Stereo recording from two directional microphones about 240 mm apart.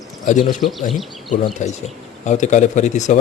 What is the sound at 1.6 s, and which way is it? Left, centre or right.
Speech, left.